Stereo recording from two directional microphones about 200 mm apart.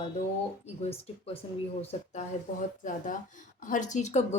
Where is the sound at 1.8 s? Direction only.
30° left (ahead or behind).